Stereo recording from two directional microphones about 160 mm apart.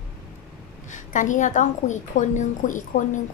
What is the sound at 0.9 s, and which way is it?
A woman's voice, 50° left (ahead or behind).